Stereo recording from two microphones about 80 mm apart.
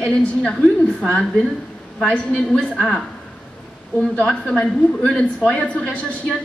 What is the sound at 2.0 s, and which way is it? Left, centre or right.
A woman's voice, centre.